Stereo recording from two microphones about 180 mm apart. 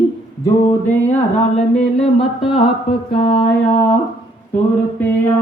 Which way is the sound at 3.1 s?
35° left (ahead or behind).